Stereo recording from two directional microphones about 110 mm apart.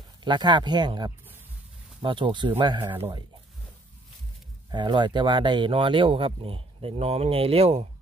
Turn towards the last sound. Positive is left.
turn(degrees=-65)  # may be behind; listen again after turning